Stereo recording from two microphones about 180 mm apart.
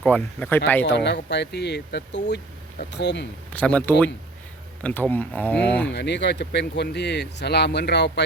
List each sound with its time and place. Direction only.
0.0 s speech: 5° left (ahead or behind)
0.9 s speech: 70° left (ahead or behind)
3.5 s speech: 5° left (ahead or behind)
5.9 s speech: 70° left (ahead or behind)